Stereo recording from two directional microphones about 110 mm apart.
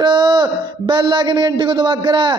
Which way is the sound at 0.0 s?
40° right (ahead or behind).